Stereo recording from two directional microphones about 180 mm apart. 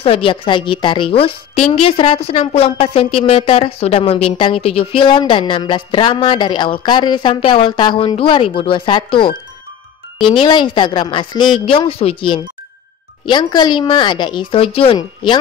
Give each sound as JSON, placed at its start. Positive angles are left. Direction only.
{"t": 0.0, "sound": "a woman's voice", "side_deg": 30}
{"t": 10.4, "sound": "a woman's voice", "side_deg": 25}